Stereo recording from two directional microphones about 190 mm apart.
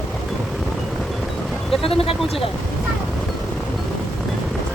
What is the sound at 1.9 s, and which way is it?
Speech, 30° left (ahead or behind).